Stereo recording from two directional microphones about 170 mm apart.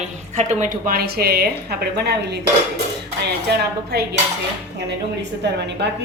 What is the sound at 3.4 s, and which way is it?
Speech, 70° right (ahead or behind).